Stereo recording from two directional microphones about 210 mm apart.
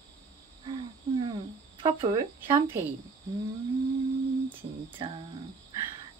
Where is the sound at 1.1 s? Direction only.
25° right (ahead or behind).